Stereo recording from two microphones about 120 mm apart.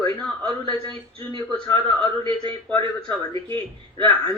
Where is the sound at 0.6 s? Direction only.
40° right (ahead or behind).